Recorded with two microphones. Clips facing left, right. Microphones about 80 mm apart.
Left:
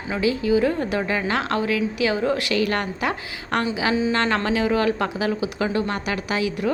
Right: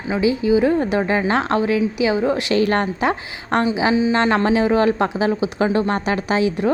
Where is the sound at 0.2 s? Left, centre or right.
Centre.